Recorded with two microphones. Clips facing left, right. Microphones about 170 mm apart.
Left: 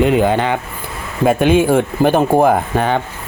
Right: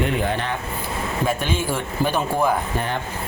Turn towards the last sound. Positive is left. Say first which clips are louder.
# left 8 dB
turn(degrees=75)  # may be behind; listen again after turning